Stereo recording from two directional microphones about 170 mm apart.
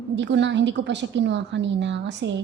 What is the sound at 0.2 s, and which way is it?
A woman's voice, 90° right.